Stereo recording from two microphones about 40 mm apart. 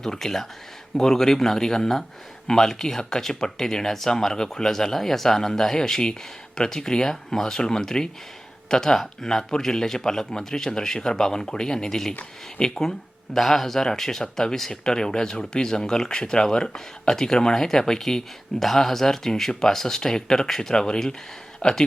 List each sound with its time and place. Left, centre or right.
0.0 s speech: centre